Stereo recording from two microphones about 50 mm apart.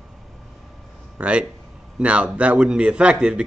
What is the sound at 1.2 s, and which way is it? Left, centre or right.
Speech, right.